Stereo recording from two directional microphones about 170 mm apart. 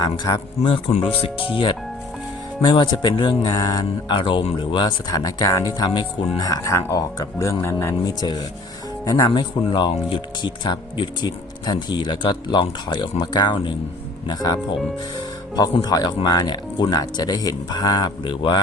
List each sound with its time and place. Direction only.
0.0 s speech: 20° left (ahead or behind)
0.6 s speech: 35° left (ahead or behind)